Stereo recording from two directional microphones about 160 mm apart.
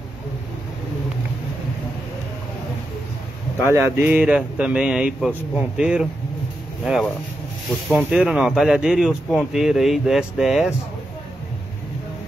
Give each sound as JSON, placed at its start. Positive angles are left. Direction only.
{"t": 3.6, "sound": "speech", "side_deg": -15}